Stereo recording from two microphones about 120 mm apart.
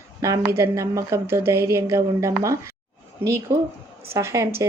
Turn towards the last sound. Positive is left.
turn(degrees=-20)  # may be behind; listen again after turning